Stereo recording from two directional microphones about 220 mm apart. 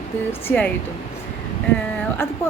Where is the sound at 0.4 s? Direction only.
5° left (ahead or behind).